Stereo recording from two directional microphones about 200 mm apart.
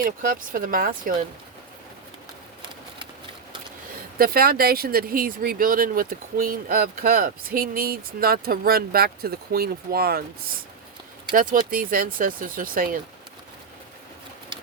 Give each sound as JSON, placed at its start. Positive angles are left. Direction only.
{"t": 0.0, "sound": "speech", "side_deg": -45}
{"t": 4.2, "sound": "speech", "side_deg": -50}
{"t": 11.3, "sound": "speech", "side_deg": -45}